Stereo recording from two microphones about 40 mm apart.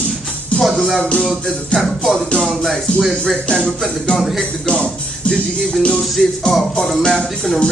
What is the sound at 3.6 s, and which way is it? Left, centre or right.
Music, centre.